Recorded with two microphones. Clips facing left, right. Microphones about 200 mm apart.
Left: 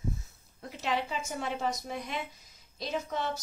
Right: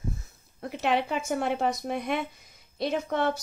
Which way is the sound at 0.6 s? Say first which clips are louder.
Right 6 dB; 60° right (ahead or behind).